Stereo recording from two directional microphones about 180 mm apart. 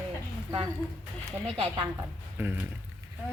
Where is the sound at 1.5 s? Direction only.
30° right (ahead or behind).